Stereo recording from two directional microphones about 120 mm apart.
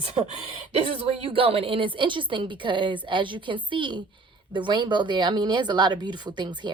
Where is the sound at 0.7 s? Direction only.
55° right (ahead or behind).